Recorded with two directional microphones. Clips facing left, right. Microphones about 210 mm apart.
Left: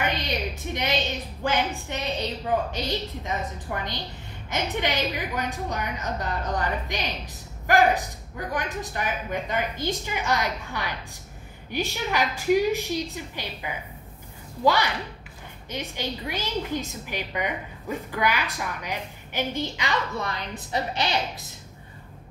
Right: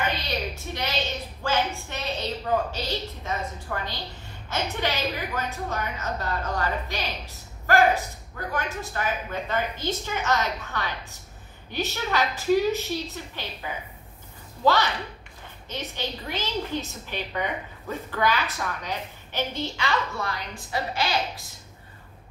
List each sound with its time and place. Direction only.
0.0 s a woman's voice: 15° left (ahead or behind)
3.3 s a woman's voice: 20° left (ahead or behind)